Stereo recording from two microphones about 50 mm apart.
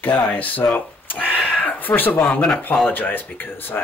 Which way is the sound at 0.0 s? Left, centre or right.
Left.